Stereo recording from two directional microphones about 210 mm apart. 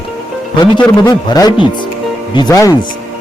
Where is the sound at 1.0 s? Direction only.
20° left (ahead or behind).